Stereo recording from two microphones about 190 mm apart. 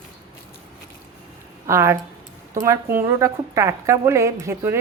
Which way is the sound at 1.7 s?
15° right (ahead or behind).